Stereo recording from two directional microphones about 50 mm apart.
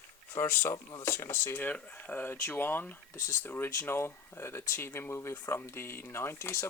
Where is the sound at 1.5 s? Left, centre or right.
Left.